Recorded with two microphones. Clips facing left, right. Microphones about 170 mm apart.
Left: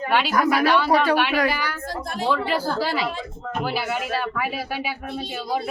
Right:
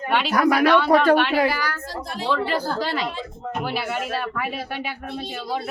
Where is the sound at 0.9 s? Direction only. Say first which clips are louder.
Right 2 dB; 60° right (ahead or behind).